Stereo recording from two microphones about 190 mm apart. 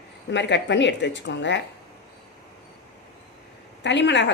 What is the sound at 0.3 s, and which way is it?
A woman's voice, 65° left (ahead or behind).